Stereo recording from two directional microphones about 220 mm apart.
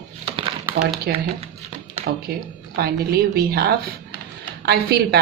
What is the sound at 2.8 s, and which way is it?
A woman's voice, 45° right (ahead or behind).